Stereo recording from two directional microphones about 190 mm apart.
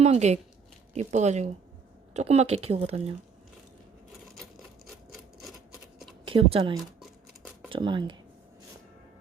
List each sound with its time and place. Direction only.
0.0 s speech: 35° right (ahead or behind)
4.9 s rub: centre (ahead or behind)
6.2 s speech: 30° right (ahead or behind)
6.7 s a sound: centre (ahead or behind)
7.7 s speech: 25° right (ahead or behind)